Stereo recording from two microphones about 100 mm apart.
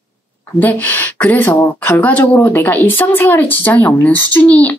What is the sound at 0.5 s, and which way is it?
Speech, 20° left (ahead or behind).